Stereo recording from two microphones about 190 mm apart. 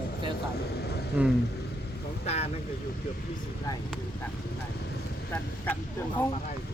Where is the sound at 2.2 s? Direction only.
35° left (ahead or behind).